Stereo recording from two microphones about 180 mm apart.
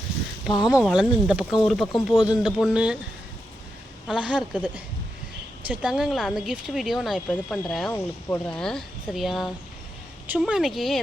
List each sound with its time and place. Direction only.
0.5 s speech: 25° left (ahead or behind)
0.8 s speech: 5° right (ahead or behind)
2.1 s speech: 20° left (ahead or behind)
2.4 s speech: centre (ahead or behind)
4.0 s speech: 5° right (ahead or behind)